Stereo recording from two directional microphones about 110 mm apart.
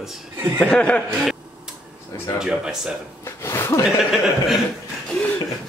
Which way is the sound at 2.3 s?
5° right (ahead or behind).